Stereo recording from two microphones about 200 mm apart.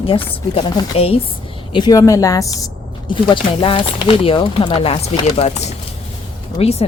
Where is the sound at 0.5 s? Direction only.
25° left (ahead or behind).